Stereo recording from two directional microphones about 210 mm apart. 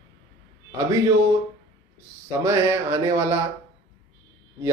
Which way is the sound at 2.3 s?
15° right (ahead or behind).